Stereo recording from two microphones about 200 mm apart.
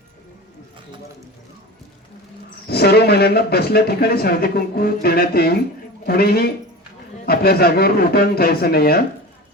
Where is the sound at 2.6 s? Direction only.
55° left (ahead or behind).